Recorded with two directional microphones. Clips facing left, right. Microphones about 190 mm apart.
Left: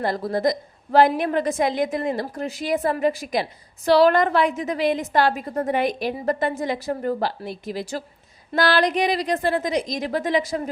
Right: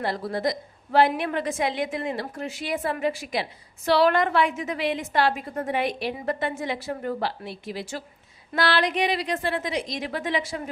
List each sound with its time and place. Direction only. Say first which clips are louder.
0.0 s a woman's voice: left 4 dB; 45° left (ahead or behind)